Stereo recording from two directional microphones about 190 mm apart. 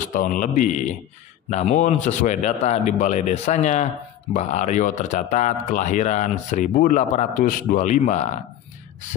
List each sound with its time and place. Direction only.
0.1 s a man's voice: 45° left (ahead or behind)